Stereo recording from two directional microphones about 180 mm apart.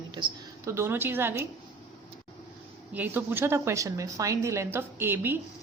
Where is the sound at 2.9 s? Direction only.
10° right (ahead or behind).